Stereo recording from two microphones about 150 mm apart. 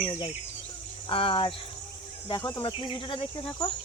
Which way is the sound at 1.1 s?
35° left (ahead or behind).